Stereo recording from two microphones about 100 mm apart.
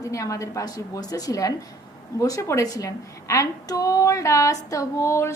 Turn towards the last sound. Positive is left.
turn(degrees=30)  # may be behind; listen again after turning